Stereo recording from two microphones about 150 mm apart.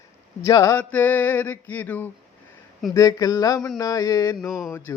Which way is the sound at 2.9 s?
20° left (ahead or behind).